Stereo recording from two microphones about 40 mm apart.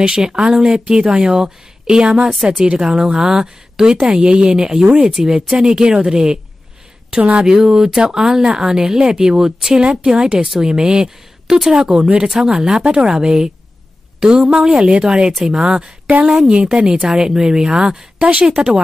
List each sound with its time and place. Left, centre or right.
0.0 s a woman's voice: right
7.4 s a woman's voice: centre
12.8 s a woman's voice: right
18.5 s speech: right